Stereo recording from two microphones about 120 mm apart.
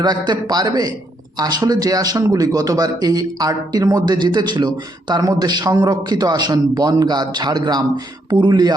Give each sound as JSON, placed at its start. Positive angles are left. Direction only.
{"t": 0.0, "sound": "speech", "side_deg": -35}